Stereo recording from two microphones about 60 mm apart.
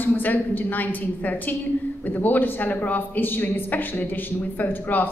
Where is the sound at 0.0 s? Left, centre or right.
Left.